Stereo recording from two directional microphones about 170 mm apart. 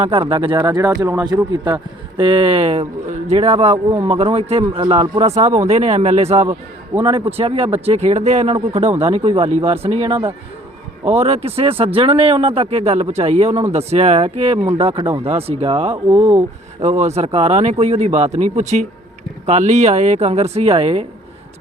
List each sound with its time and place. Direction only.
0.0 s a man's voice: 30° right (ahead or behind)
3.8 s speech: 15° right (ahead or behind)
4.1 s a man's voice: 35° right (ahead or behind)
6.9 s speech: 10° right (ahead or behind)
7.3 s a man's voice: 35° right (ahead or behind)